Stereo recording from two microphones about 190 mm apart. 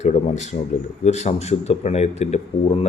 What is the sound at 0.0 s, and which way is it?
Speech, 35° left (ahead or behind).